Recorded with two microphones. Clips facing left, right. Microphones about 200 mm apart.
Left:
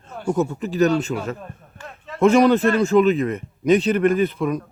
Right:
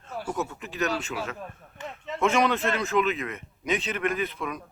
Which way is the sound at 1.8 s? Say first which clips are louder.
Right 2 dB; 20° right (ahead or behind).